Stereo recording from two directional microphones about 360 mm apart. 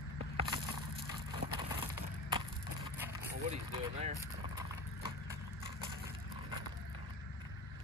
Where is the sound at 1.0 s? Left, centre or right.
Centre.